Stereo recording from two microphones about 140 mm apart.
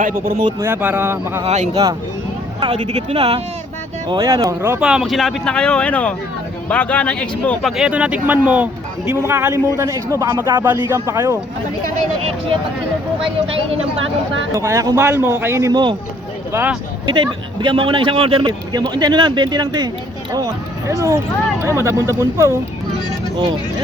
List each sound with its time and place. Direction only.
0.6 s a man's voice: 15° right (ahead or behind)
1.5 s speech: 50° right (ahead or behind)
3.1 s speech: 45° right (ahead or behind)
4.1 s speech: 25° right (ahead or behind)
4.8 s speech: 5° right (ahead or behind)
7.8 s a man's voice: 10° right (ahead or behind)
14.5 s speech: 20° right (ahead or behind)
17.1 s speech: 35° right (ahead or behind)